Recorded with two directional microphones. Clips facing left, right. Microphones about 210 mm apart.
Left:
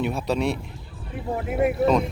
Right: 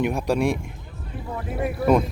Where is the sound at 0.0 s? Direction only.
15° right (ahead or behind).